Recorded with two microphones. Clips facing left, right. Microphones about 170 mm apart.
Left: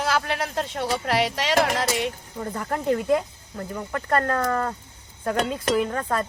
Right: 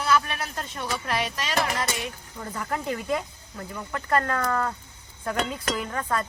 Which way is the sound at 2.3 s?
35° left (ahead or behind).